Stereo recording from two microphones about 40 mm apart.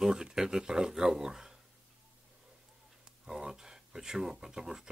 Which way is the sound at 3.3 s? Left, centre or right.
Centre.